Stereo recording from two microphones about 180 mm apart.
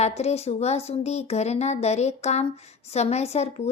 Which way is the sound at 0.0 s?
35° left (ahead or behind).